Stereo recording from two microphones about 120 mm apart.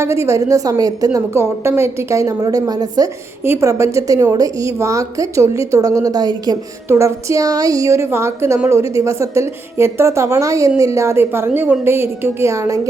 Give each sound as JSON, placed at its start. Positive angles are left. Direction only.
{"t": 0.0, "sound": "a woman's voice", "side_deg": -20}
{"t": 3.4, "sound": "a woman's voice", "side_deg": -20}
{"t": 6.8, "sound": "a woman's voice", "side_deg": -20}